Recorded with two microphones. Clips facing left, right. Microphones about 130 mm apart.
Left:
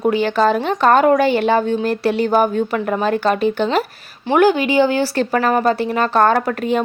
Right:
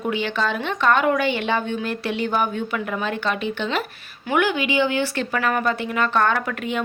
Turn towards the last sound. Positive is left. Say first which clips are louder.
# left 7 dB
turn(degrees=40)  # may be behind; listen again after turning